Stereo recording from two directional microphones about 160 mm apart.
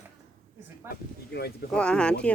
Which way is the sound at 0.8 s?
80° left.